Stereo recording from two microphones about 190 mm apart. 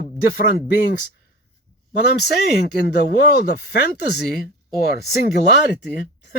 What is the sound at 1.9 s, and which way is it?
Speech, 60° left (ahead or behind).